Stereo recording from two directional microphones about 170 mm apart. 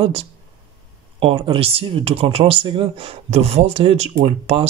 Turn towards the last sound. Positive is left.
turn(degrees=-35)  # may be behind; listen again after turning